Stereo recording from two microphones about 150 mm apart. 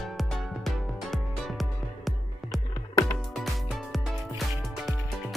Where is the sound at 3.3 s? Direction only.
Centre (ahead or behind).